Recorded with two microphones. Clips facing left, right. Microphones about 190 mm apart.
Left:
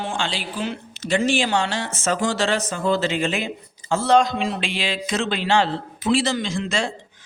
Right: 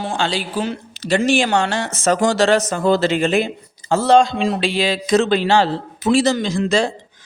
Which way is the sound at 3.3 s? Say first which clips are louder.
Right 8 dB; 35° right (ahead or behind).